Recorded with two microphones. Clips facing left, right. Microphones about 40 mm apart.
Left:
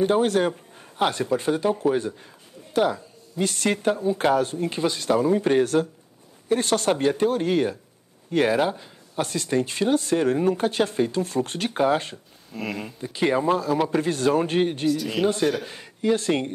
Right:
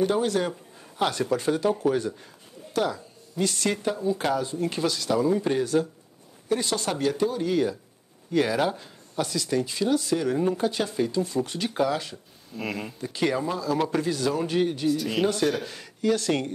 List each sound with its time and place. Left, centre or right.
0.0 s speech: left
4.9 s speech: left
6.9 s speech: left
7.2 s speech: left
8.5 s speech: centre
9.1 s speech: left
12.5 s speech: centre
13.1 s speech: left
13.5 s speech: left
15.0 s speech: centre
15.6 s speech: left